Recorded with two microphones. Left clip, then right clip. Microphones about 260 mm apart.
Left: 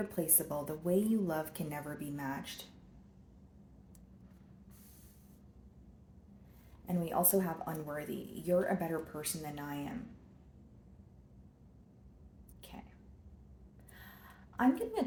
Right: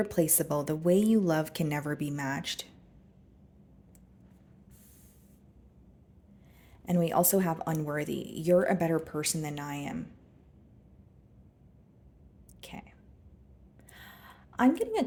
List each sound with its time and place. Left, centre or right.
0.0 s speech: right
6.8 s speech: right
12.6 s whispering: right
14.5 s speech: right